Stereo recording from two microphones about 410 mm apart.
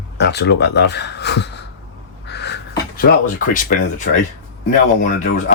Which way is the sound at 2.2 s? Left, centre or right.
Left.